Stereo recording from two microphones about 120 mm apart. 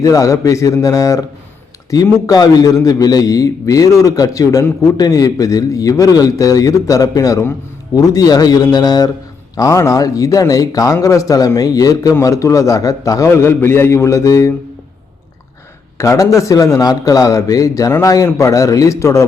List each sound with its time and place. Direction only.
0.0 s a man's voice: 30° left (ahead or behind)
16.0 s a man's voice: 25° left (ahead or behind)